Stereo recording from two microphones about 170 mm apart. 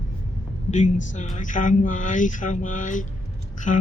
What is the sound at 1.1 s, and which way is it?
Speech, 45° left (ahead or behind).